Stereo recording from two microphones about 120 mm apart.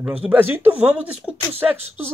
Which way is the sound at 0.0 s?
10° right (ahead or behind).